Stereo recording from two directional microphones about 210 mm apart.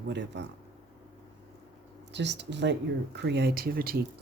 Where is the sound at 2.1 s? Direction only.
55° right (ahead or behind).